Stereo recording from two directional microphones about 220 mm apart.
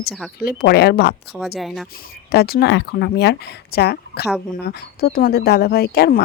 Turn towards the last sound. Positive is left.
turn(degrees=45)  # may be behind; listen again after turning